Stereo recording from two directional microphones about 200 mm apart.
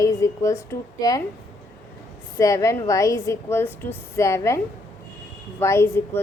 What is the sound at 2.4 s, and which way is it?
A woman's voice, 15° left (ahead or behind).